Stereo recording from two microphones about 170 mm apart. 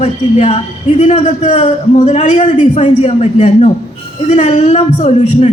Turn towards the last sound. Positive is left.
turn(degrees=40)  # may be behind; listen again after turning